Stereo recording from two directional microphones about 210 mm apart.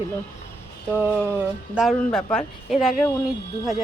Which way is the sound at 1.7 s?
Centre (ahead or behind).